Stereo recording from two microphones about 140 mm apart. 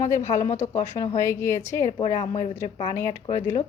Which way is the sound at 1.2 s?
20° left (ahead or behind).